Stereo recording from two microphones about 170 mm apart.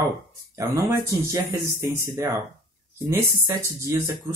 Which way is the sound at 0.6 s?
15° right (ahead or behind).